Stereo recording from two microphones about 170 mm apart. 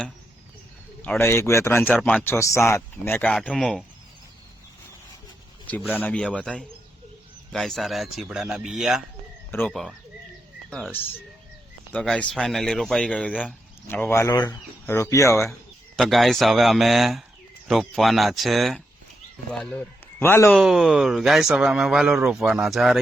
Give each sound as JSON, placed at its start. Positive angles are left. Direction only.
{"t": 1.0, "sound": "speech", "side_deg": 10}
{"t": 2.0, "sound": "speech", "side_deg": 0}
{"t": 2.2, "sound": "speech", "side_deg": 15}
{"t": 5.6, "sound": "speech", "side_deg": 10}
{"t": 9.5, "sound": "speech", "side_deg": 10}
{"t": 16.0, "sound": "a man's voice", "side_deg": 0}
{"t": 20.6, "sound": "speech", "side_deg": 0}